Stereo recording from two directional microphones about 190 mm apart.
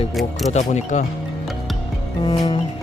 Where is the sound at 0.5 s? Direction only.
40° left (ahead or behind).